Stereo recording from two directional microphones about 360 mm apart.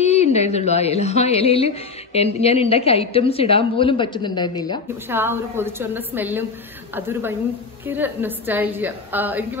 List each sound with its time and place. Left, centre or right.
0.0 s a woman's voice: centre
5.1 s a woman's voice: centre